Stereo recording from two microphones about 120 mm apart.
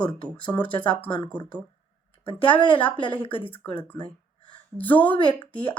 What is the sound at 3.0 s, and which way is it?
Speech, 45° left (ahead or behind).